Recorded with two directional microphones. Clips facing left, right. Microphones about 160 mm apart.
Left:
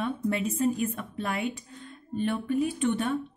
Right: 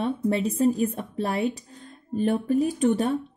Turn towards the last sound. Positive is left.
turn(degrees=-40)  # may be behind; listen again after turning